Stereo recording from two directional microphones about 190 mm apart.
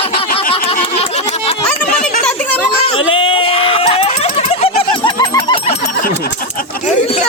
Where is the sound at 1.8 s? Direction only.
45° left (ahead or behind).